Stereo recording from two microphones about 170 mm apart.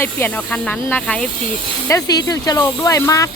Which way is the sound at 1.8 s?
20° left (ahead or behind).